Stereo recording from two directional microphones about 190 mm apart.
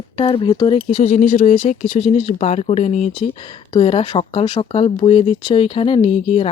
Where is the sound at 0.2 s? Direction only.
25° left (ahead or behind).